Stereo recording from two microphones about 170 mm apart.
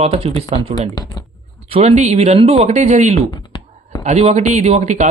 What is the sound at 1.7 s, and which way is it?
Speech, 40° right (ahead or behind).